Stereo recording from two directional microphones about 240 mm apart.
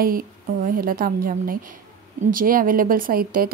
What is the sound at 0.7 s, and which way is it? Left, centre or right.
Speech, right.